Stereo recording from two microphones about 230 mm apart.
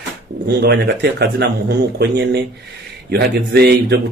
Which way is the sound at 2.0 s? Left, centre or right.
Right.